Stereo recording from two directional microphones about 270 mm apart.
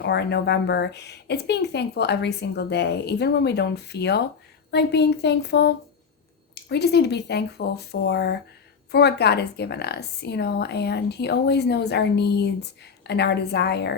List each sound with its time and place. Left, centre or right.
0.0 s speech: left